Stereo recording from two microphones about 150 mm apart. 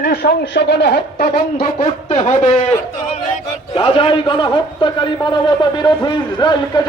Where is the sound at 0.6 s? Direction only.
90° left.